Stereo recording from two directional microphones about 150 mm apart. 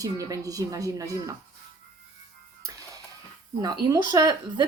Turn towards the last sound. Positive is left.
turn(degrees=-25)  # may be behind; listen again after turning